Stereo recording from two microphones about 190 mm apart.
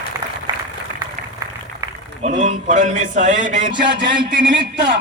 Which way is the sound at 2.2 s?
40° right (ahead or behind).